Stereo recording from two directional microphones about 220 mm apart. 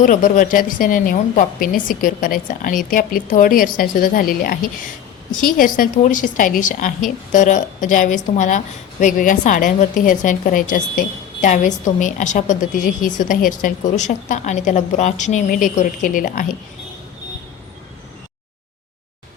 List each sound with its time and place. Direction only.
0.0 s a woman's voice: 35° left (ahead or behind)